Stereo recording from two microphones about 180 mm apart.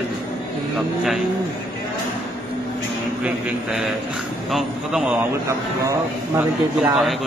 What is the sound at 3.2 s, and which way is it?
A man's voice, centre (ahead or behind).